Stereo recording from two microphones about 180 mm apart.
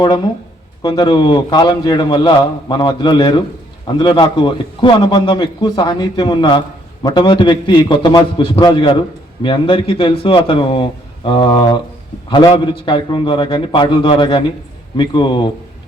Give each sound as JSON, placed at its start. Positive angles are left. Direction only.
{"t": 0.8, "sound": "a man's voice", "side_deg": 25}